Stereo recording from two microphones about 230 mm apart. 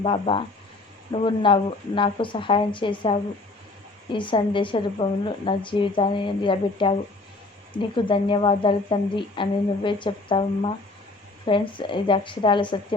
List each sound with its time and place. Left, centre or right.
0.0 s a woman's voice: left